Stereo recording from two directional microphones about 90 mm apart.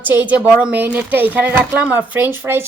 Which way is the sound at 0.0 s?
20° right (ahead or behind).